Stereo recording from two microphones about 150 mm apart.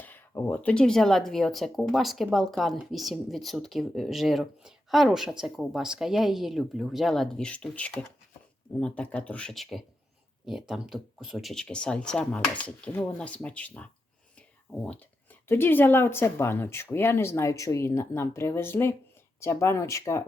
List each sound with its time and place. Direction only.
0.0 s speech: 15° left (ahead or behind)